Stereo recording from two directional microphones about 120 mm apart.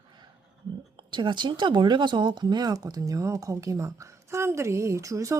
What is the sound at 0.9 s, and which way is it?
Speech, 40° right (ahead or behind).